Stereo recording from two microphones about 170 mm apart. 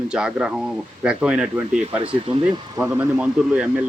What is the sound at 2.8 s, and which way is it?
Speech, 10° right (ahead or behind).